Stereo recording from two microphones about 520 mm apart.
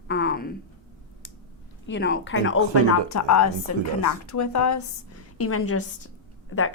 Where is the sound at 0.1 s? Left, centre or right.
Centre.